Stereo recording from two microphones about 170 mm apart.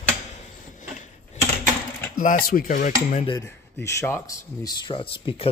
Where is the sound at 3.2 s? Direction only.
20° left (ahead or behind).